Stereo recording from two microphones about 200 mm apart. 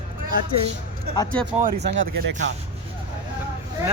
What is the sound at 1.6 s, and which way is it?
Speech, 50° right (ahead or behind).